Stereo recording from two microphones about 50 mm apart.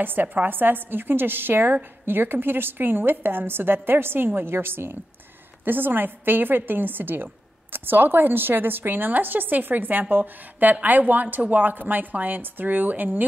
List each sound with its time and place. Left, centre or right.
0.0 s a woman's voice: right